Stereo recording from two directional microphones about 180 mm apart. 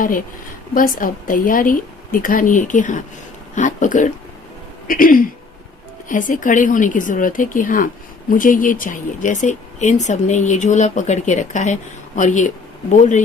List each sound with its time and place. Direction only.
0.7 s a woman's voice: 50° left (ahead or behind)